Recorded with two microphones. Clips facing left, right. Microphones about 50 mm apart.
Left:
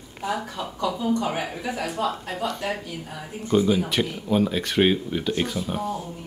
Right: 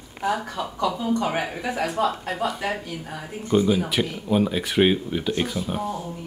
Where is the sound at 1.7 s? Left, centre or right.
Centre.